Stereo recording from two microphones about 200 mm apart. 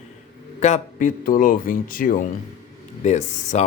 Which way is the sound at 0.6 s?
35° left (ahead or behind).